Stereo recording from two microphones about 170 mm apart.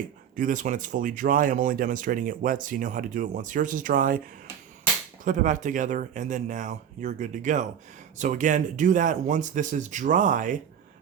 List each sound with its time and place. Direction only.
0.3 s speech: 50° right (ahead or behind)
5.2 s speech: 50° right (ahead or behind)